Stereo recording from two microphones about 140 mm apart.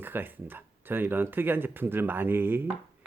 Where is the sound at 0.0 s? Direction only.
15° right (ahead or behind).